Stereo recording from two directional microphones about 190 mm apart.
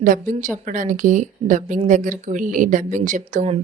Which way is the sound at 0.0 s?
45° right (ahead or behind).